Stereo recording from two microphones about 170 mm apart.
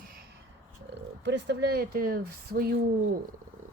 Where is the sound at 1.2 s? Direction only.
90° right; by 2.7 s 65° right (ahead or behind).